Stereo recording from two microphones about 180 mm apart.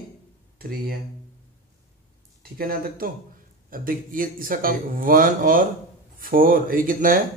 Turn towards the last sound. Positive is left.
turn(degrees=-50)  # may be behind; listen again after turning